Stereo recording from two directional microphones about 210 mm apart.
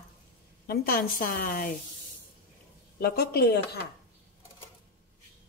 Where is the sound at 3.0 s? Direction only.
50° left (ahead or behind).